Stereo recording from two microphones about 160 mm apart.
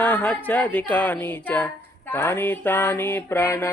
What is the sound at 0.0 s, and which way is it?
Speech, 10° left (ahead or behind).